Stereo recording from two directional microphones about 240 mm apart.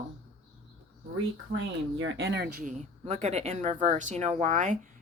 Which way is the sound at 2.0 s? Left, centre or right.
Right.